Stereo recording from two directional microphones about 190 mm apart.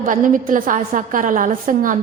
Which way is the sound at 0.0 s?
45° right (ahead or behind).